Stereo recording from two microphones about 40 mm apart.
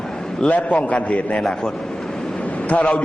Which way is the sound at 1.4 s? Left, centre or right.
Centre.